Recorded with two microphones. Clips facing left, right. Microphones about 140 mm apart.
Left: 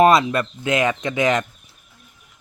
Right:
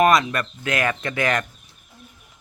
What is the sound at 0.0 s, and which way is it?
Speech, 25° left (ahead or behind).